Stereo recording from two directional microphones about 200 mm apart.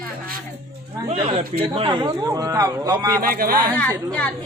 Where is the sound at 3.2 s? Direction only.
45° right (ahead or behind).